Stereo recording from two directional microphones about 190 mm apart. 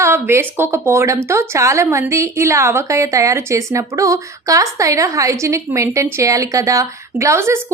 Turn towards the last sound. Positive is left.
turn(degrees=-15)  # may be behind; listen again after turning